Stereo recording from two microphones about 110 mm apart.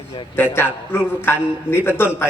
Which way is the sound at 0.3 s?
20° left (ahead or behind).